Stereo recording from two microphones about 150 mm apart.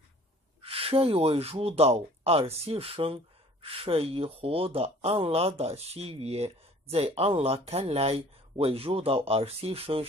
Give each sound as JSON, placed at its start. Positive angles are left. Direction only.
{"t": 0.6, "sound": "speech", "side_deg": -40}